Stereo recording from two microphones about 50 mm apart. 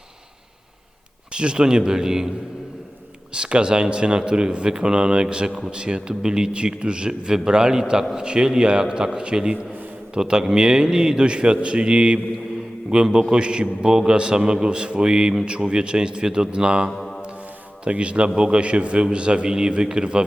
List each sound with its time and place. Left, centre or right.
1.3 s a man's voice: centre
3.3 s a man's voice: centre
17.0 s a sound: centre
17.8 s a man's voice: right